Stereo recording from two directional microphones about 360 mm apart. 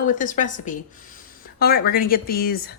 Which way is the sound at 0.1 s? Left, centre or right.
Left.